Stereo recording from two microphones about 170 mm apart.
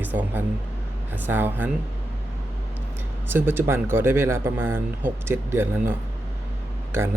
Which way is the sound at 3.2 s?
15° right (ahead or behind).